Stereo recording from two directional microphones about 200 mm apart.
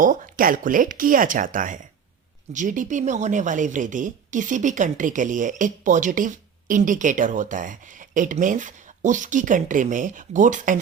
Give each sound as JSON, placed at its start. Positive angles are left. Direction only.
{"t": 0.0, "sound": "speech", "side_deg": -45}